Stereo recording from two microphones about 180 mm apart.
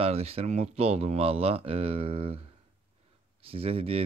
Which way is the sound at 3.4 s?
30° right (ahead or behind).